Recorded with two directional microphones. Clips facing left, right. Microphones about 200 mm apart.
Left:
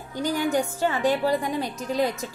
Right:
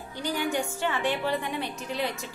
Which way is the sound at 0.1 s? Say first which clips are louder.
Left 5 dB; 45° left (ahead or behind).